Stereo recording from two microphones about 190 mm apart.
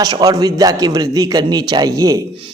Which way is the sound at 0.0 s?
20° right (ahead or behind).